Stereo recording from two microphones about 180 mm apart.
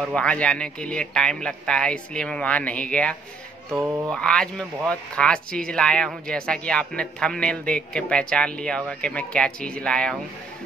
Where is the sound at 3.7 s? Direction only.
15° right (ahead or behind).